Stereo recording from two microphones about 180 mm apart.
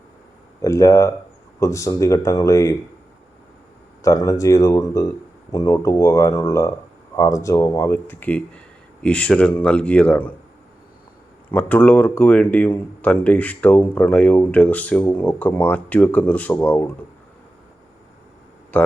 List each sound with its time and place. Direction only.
0.6 s speech: 20° left (ahead or behind)
4.0 s speech: 20° left (ahead or behind)
11.4 s speech: 10° left (ahead or behind)
18.7 s speech: 10° left (ahead or behind)